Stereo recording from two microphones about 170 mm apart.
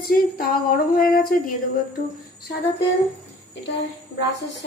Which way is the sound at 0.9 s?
60° left (ahead or behind).